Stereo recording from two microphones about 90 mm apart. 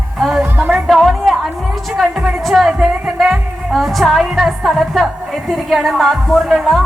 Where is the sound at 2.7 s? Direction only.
10° right (ahead or behind).